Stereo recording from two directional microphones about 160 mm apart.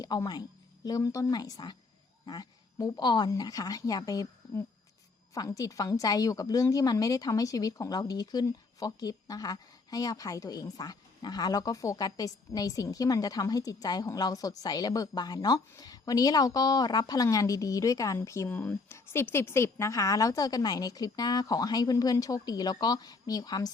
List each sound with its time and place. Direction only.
0.0 s a woman's voice: 25° left (ahead or behind)
2.2 s a sound: 25° left (ahead or behind)
3.0 s a woman's voice: 25° left (ahead or behind)